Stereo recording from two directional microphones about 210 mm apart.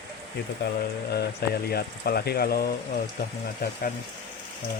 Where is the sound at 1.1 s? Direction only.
50° left (ahead or behind).